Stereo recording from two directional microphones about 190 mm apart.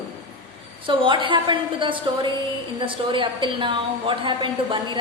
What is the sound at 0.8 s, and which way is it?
A woman's voice, 25° right (ahead or behind).